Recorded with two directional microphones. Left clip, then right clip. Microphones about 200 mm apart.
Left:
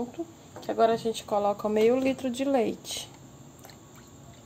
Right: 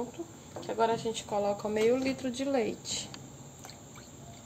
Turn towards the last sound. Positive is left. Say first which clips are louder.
# left 4 dB
turn(degrees=40)  # may be behind; listen again after turning